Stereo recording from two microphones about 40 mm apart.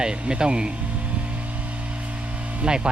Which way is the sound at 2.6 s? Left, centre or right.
Right.